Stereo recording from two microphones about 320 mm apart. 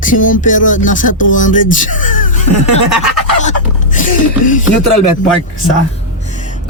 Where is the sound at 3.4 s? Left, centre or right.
Left.